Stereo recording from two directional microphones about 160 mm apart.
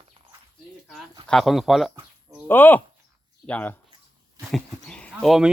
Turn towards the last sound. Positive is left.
turn(degrees=0)  # may be behind; listen again after turning